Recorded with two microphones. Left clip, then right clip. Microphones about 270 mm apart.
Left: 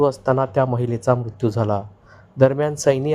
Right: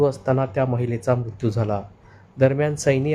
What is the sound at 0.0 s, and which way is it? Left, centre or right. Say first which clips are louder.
Speech: left 2 dB; centre.